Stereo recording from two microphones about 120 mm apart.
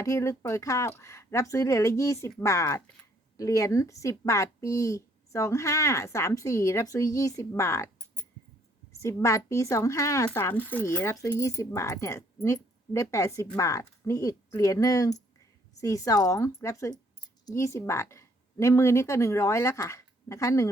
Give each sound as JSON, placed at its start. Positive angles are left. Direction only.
{"t": 0.0, "sound": "speech", "side_deg": 25}
{"t": 8.9, "sound": "a sound", "side_deg": 25}
{"t": 9.2, "sound": "speech", "side_deg": 25}